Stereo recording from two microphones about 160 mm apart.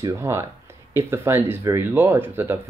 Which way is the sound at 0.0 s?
15° right (ahead or behind).